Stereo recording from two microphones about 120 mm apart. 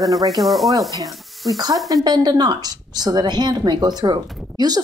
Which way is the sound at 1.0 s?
Centre (ahead or behind).